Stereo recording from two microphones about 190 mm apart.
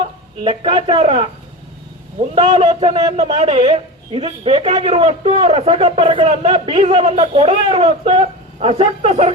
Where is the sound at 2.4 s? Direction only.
25° right (ahead or behind).